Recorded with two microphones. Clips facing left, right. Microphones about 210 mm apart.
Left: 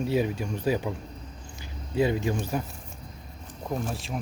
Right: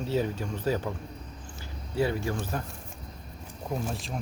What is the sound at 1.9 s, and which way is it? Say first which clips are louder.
Speech: left 3 dB; 15° left (ahead or behind).